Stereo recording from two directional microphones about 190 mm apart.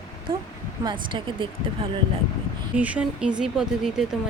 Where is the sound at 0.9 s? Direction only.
25° right (ahead or behind).